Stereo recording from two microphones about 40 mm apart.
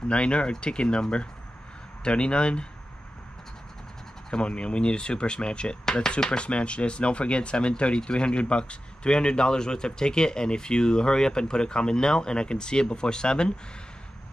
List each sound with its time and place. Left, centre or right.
0.1 s speech: left
2.0 s speech: left
4.3 s speech: left